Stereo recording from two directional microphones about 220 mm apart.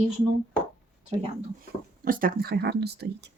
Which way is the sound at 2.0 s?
40° right (ahead or behind).